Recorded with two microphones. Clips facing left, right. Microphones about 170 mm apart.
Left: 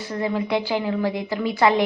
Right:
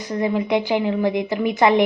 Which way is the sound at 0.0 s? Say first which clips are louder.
Right 3 dB; 20° right (ahead or behind).